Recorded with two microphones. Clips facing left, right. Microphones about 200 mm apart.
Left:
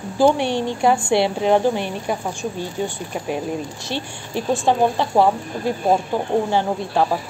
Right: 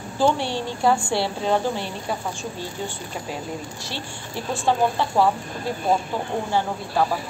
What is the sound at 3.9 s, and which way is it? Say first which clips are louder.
Speech: left 6 dB; 20° left (ahead or behind).